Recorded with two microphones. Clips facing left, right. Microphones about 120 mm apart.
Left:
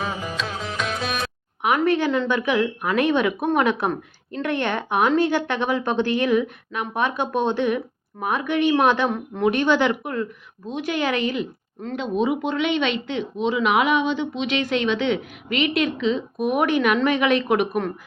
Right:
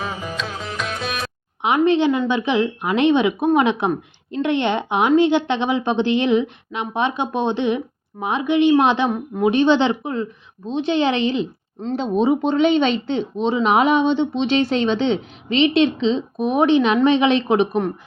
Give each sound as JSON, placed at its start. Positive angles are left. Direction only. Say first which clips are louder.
{"t": 0.0, "sound": "music", "louder": "even", "side_deg": 0}
{"t": 1.6, "sound": "speech", "louder": "right 4 dB", "side_deg": -20}